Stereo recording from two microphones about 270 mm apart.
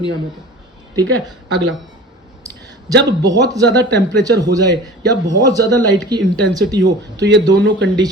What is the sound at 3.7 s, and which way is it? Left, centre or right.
Speech, right.